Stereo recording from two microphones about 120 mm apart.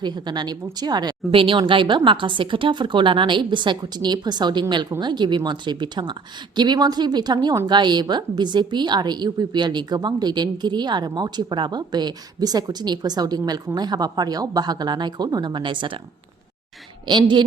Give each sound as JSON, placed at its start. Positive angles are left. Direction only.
{"t": 0.0, "sound": "a woman's voice", "side_deg": -35}
{"t": 17.1, "sound": "a woman's voice", "side_deg": -40}